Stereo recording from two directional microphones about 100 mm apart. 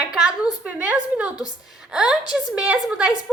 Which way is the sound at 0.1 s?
5° right (ahead or behind).